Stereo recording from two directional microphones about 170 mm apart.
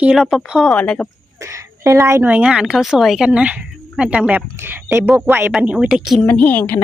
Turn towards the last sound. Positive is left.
turn(degrees=10)  # may be behind; listen again after turning